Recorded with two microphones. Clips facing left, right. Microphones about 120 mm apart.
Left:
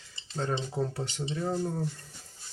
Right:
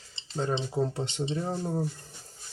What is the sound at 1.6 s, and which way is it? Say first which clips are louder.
Speech: right 1 dB; 15° right (ahead or behind).